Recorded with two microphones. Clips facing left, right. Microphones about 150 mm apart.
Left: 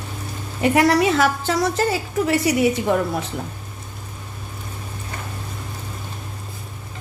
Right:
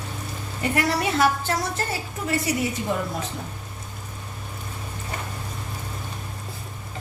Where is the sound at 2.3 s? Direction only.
80° left.